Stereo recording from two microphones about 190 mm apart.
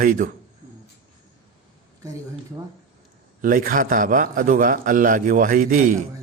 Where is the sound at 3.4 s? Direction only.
50° right (ahead or behind).